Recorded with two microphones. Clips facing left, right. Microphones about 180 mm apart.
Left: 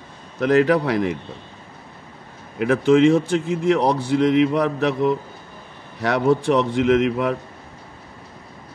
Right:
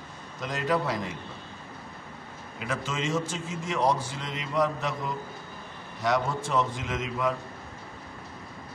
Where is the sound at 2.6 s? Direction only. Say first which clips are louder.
Left 17 dB; 60° left (ahead or behind).